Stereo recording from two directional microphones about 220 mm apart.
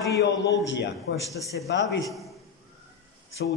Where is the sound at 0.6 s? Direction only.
55° left (ahead or behind).